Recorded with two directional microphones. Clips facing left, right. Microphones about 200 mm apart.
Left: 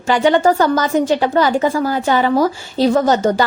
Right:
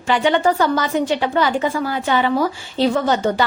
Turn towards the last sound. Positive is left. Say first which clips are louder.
# left 4 dB
turn(degrees=40)  # may be behind; listen again after turning